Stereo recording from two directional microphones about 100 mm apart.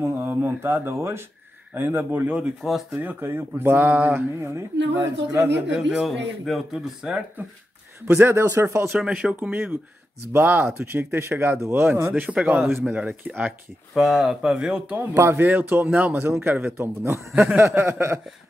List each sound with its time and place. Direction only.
0.0 s speech: 25° right (ahead or behind); by 2.8 s 5° right (ahead or behind)
2.9 s a man's voice: 20° right (ahead or behind)
4.4 s a man's voice: 30° right (ahead or behind)
5.8 s speech: 5° right (ahead or behind)
8.0 s a man's voice: 25° right (ahead or behind)
8.9 s a man's voice: 10° right (ahead or behind)
15.1 s a man's voice: 25° right (ahead or behind)
17.3 s speech: 5° right (ahead or behind)
17.6 s a man's voice: 25° right (ahead or behind)